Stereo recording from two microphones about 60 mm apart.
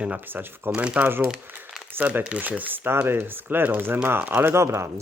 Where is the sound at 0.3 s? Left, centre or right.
Right.